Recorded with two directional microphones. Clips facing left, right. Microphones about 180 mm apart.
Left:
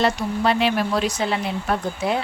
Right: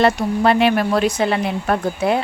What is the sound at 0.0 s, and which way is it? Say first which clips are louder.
Speech: right 5 dB; 55° right (ahead or behind).